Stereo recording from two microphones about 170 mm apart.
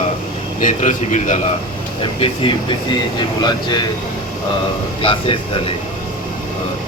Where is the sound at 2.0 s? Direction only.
30° left (ahead or behind).